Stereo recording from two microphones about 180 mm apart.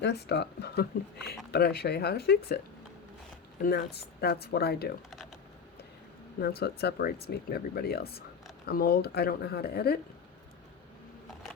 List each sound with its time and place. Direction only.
0.0 s speech: 70° left (ahead or behind)
3.6 s speech: 60° left (ahead or behind)
6.6 s speech: 65° left (ahead or behind)